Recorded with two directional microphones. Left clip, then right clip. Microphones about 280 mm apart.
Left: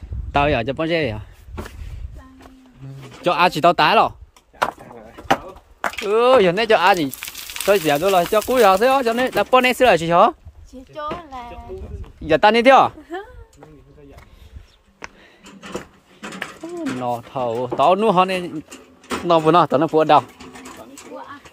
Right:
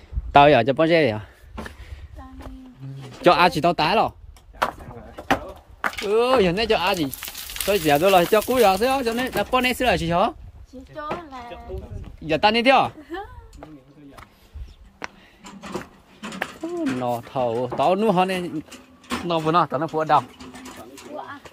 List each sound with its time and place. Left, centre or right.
0.3 s speech: centre
3.3 s speech: centre
4.6 s a sound: left
5.9 s speech: centre
10.7 s a sound: left
12.3 s speech: centre
15.0 s a sound: centre
16.4 s mechanisms: centre
17.0 s speech: centre; by 20.2 s left